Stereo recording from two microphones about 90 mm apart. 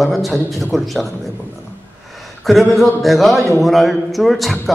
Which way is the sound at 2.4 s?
Centre (ahead or behind).